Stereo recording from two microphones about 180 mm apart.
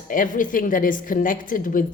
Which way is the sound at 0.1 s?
50° left (ahead or behind).